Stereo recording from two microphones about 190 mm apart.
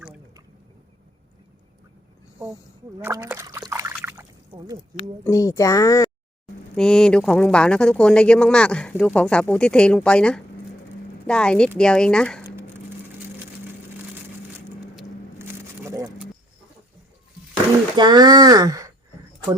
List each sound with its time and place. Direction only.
3.0 s trickle: 10° right (ahead or behind)
4.5 s speech: 20° right (ahead or behind)
5.2 s speech: 15° left (ahead or behind)
6.7 s speech: 5° left (ahead or behind)
15.4 s a sound: 15° right (ahead or behind)
17.9 s speech: 20° right (ahead or behind)